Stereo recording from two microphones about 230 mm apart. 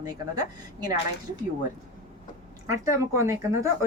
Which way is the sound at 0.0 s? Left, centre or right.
Centre.